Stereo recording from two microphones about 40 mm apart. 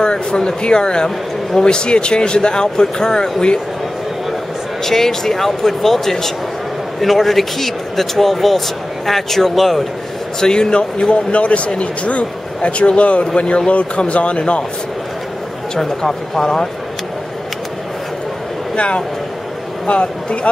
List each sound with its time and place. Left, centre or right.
0.0 s speech: left
4.8 s speech: centre
10.4 s speech: centre
15.7 s speech: centre
18.8 s speech: left